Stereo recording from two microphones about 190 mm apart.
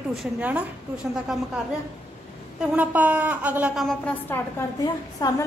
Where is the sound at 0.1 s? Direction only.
5° right (ahead or behind).